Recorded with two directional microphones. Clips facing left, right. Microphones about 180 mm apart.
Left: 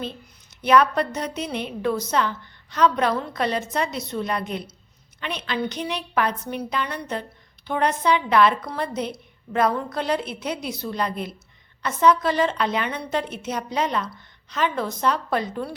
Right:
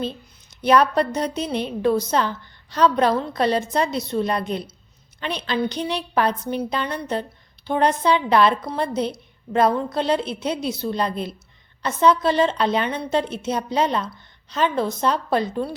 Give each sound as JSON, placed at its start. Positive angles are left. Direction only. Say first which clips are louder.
{"t": 0.6, "sound": "a woman's voice", "louder": "right 1 dB", "side_deg": -35}